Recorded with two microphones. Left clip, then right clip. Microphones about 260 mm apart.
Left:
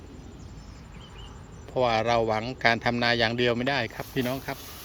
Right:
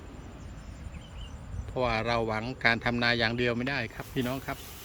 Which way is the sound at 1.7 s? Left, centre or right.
Centre.